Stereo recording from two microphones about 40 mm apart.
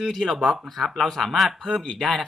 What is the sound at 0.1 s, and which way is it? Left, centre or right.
Speech, centre.